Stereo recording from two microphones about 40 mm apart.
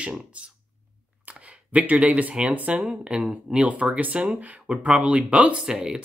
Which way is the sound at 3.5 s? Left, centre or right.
Right.